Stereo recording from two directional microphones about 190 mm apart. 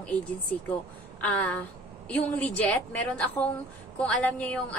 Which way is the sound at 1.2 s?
5° left (ahead or behind).